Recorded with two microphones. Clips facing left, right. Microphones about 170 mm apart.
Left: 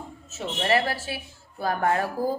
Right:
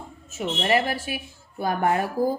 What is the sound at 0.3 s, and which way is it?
Speech, 15° right (ahead or behind).